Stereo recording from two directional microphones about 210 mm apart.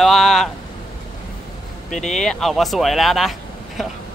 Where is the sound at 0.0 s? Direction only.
Centre (ahead or behind).